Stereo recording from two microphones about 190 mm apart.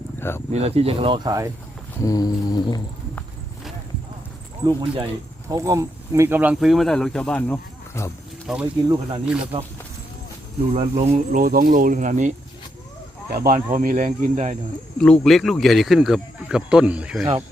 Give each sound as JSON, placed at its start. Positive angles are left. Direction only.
{"t": 0.2, "sound": "speech", "side_deg": 10}
{"t": 0.5, "sound": "speech", "side_deg": -35}
{"t": 2.0, "sound": "a sound", "side_deg": 20}
{"t": 4.6, "sound": "speech", "side_deg": -20}
{"t": 8.5, "sound": "speech", "side_deg": 0}
{"t": 8.9, "sound": "speech", "side_deg": -20}
{"t": 10.8, "sound": "speech", "side_deg": -30}
{"t": 11.3, "sound": "speech", "side_deg": -45}
{"t": 13.3, "sound": "speech", "side_deg": -45}
{"t": 14.9, "sound": "speech", "side_deg": 5}